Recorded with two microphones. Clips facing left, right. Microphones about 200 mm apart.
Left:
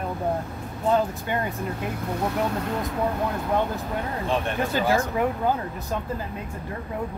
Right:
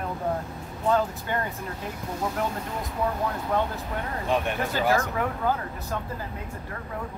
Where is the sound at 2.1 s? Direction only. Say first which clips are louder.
Left 3 dB; 65° left (ahead or behind).